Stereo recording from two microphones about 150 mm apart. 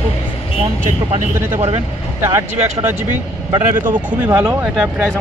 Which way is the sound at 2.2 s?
15° right (ahead or behind).